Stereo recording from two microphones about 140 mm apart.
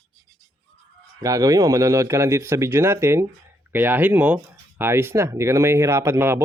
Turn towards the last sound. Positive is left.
turn(degrees=-15)  # may be behind; listen again after turning